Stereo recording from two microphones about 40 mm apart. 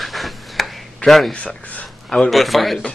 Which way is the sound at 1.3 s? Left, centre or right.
Left.